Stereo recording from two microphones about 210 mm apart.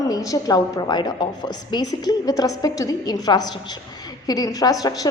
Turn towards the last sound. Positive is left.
turn(degrees=15)  # may be behind; listen again after turning